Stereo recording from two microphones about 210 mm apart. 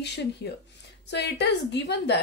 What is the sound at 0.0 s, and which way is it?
A woman's voice, 55° left (ahead or behind).